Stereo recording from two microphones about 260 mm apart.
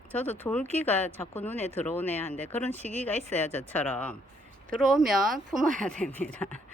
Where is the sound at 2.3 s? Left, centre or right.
Right.